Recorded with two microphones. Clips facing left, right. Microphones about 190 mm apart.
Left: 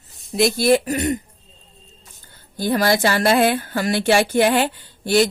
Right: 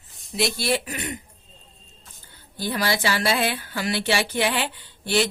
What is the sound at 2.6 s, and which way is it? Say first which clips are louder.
Speech: left 7 dB; 45° left (ahead or behind).